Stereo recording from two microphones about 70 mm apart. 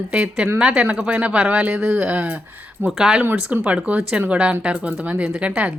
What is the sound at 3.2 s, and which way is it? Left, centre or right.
Speech, right.